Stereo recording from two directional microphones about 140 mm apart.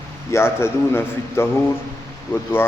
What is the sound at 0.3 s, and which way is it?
A man's voice, 20° left (ahead or behind).